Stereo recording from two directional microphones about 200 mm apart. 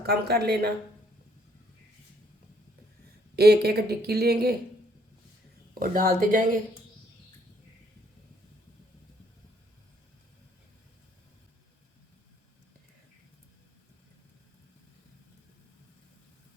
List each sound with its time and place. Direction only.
0.0 s speech: 50° right (ahead or behind)
3.3 s speech: 55° right (ahead or behind)
5.8 s speech: 45° right (ahead or behind)